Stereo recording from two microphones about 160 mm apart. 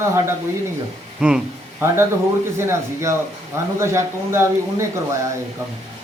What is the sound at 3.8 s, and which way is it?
Speech, 15° right (ahead or behind).